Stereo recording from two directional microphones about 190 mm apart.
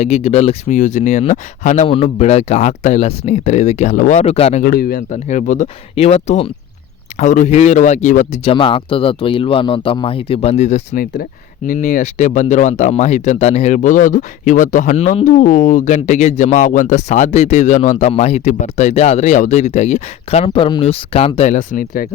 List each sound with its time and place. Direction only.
0.0 s speech: 35° left (ahead or behind)
4.7 s speech: 50° left (ahead or behind)
5.1 s speech: 40° left (ahead or behind)
8.5 s speech: 25° left (ahead or behind); by 22.1 s 50° left (ahead or behind)